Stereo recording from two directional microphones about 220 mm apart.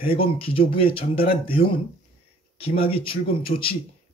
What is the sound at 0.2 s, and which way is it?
Speech, 25° left (ahead or behind).